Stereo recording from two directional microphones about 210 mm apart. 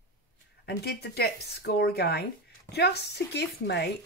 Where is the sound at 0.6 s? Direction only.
50° left (ahead or behind).